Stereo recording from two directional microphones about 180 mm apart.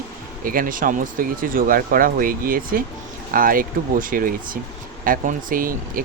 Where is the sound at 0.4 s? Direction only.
50° right (ahead or behind).